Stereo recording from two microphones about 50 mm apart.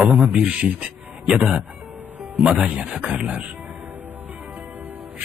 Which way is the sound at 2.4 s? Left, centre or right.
Centre.